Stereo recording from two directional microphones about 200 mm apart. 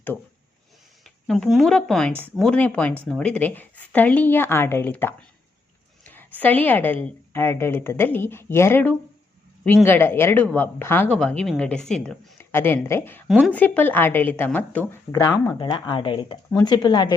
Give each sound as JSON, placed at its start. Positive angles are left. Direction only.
{"t": 1.0, "sound": "speech", "side_deg": 0}
{"t": 6.1, "sound": "speech", "side_deg": 10}
{"t": 13.2, "sound": "a woman's voice", "side_deg": 0}
{"t": 13.5, "sound": "speech", "side_deg": 10}
{"t": 15.3, "sound": "speech", "side_deg": 20}